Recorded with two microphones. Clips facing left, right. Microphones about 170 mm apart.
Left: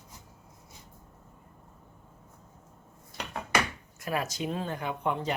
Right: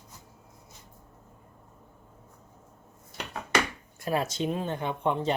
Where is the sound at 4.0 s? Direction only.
25° right (ahead or behind).